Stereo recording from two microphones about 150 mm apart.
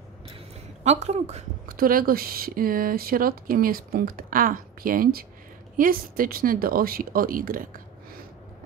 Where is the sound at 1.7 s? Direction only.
75° right (ahead or behind).